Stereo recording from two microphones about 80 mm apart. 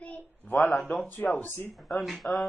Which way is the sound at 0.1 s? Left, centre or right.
Left.